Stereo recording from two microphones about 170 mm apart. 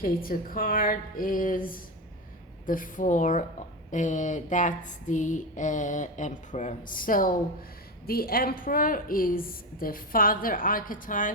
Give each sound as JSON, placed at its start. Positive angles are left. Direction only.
{"t": 0.0, "sound": "a woman's voice", "side_deg": 55}
{"t": 2.6, "sound": "a sound", "side_deg": 50}
{"t": 8.0, "sound": "a woman's voice", "side_deg": 60}